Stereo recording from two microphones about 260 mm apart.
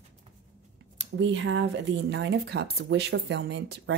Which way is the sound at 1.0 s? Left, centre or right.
Right.